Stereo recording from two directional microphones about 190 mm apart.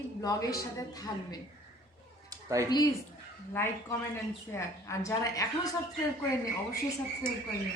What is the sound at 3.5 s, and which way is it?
A woman's voice, 10° left (ahead or behind).